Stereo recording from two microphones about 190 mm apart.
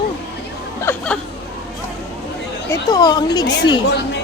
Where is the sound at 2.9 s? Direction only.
20° left (ahead or behind).